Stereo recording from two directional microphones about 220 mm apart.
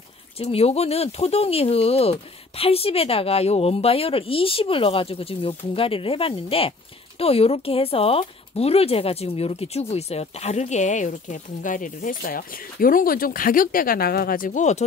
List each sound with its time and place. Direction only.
0.4 s speech: 25° left (ahead or behind)